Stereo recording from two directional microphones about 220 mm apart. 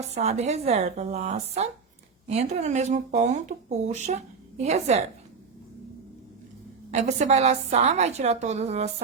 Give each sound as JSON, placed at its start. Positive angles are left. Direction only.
{"t": 0.1, "sound": "a woman's voice", "side_deg": -30}
{"t": 6.9, "sound": "a woman's voice", "side_deg": -30}